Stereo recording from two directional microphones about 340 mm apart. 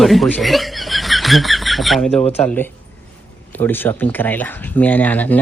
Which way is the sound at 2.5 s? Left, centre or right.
Centre.